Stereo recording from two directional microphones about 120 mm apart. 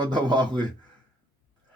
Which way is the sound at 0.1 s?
40° right (ahead or behind).